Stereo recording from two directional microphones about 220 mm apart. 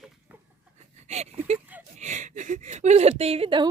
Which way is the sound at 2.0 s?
35° right (ahead or behind).